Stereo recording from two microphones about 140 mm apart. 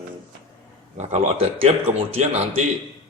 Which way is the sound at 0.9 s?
50° right (ahead or behind).